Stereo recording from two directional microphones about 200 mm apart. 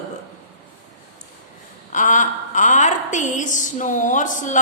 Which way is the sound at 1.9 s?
40° left (ahead or behind).